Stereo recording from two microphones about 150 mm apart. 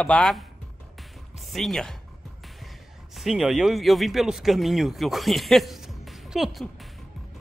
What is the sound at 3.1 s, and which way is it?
Speech, centre (ahead or behind).